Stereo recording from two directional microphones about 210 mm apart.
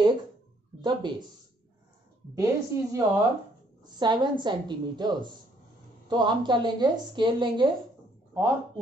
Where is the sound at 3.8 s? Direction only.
20° right (ahead or behind).